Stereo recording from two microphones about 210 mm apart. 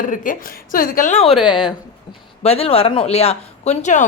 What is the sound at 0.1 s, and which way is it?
A woman's voice, 40° left (ahead or behind).